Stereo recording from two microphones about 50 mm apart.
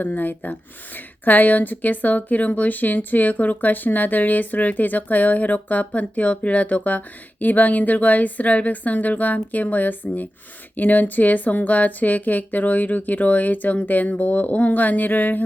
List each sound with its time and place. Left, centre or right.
0.0 s speech: left